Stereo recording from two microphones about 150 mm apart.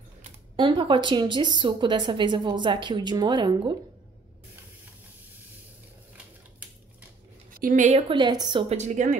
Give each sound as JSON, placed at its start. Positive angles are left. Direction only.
{"t": 0.6, "sound": "a woman's voice", "side_deg": -35}
{"t": 7.5, "sound": "a woman's voice", "side_deg": -65}
{"t": 8.1, "sound": "a woman's voice", "side_deg": -30}
{"t": 8.6, "sound": "a woman's voice", "side_deg": -50}